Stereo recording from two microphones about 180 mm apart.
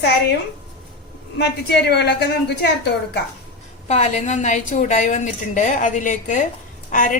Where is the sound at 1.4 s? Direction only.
65° left (ahead or behind).